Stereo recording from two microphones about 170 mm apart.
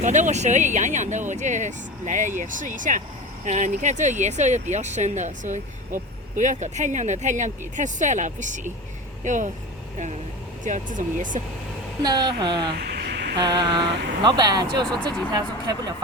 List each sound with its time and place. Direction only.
0.0 s speech: 45° right (ahead or behind)
10.6 s speech: 50° right (ahead or behind)
12.0 s speech: 25° right (ahead or behind)
12.9 s a sound: 75° right (ahead or behind)
13.3 s speech: 25° right (ahead or behind)